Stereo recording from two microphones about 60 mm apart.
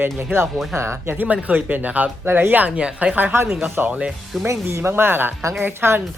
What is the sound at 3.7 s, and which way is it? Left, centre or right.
A woman's voice, right.